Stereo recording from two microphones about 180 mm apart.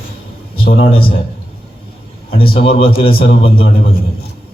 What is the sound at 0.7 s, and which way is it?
Speech, 30° left (ahead or behind).